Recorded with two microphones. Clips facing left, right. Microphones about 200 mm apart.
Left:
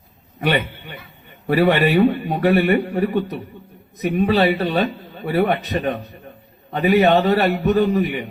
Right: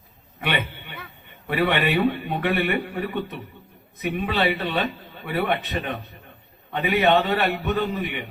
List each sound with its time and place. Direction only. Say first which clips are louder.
0.3 s a man's voice: left 6 dB; 40° left (ahead or behind)